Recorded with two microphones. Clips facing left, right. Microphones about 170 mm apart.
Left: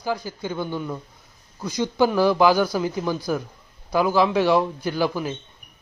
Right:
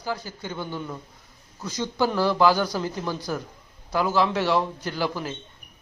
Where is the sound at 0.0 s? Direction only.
15° left (ahead or behind).